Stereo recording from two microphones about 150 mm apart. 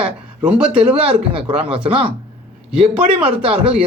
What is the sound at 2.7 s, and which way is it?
Speech, 5° right (ahead or behind).